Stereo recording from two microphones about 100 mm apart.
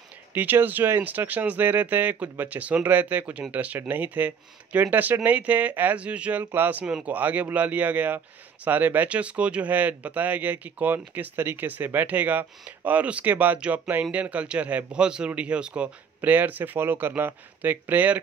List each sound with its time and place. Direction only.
0.3 s speech: 20° right (ahead or behind)